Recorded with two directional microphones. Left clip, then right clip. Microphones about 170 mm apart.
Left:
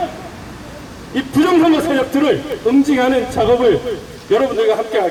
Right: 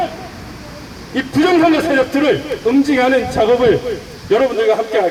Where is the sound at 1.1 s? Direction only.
20° left (ahead or behind).